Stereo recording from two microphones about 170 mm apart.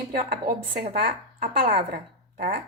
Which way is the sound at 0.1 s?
60° right (ahead or behind).